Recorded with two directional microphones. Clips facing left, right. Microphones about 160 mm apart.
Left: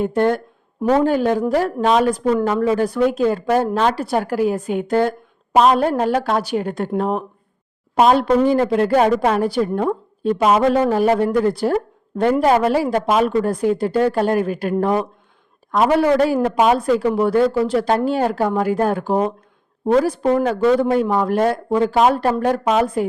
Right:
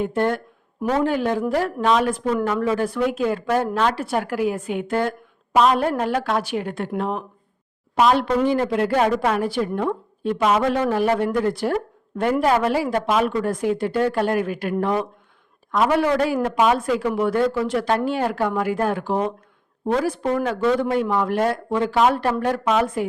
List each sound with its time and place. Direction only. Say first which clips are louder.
0.0 s a woman's voice: left 4 dB; 45° left (ahead or behind)